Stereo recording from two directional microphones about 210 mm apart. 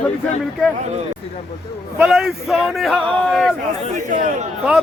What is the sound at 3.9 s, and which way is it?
Speech, 40° right (ahead or behind).